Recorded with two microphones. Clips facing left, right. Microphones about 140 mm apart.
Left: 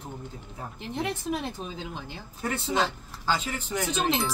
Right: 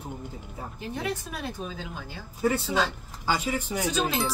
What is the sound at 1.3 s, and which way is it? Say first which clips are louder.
Speech: left 3 dB; 20° left (ahead or behind).